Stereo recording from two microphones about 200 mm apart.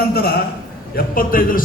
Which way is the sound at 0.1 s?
50° left (ahead or behind).